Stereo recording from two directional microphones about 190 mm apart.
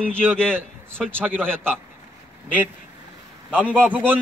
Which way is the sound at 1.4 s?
5° left (ahead or behind).